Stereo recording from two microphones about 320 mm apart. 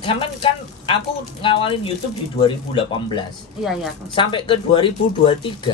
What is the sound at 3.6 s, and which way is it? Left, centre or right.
Speech, centre.